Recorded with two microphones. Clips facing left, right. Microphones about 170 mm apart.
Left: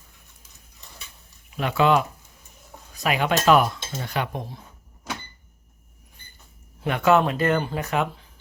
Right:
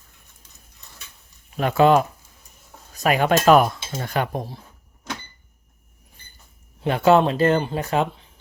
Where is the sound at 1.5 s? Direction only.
45° right (ahead or behind).